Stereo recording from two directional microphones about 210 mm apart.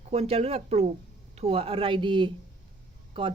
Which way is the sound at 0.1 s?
30° right (ahead or behind).